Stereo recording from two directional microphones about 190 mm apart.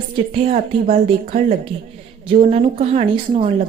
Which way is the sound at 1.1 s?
35° right (ahead or behind).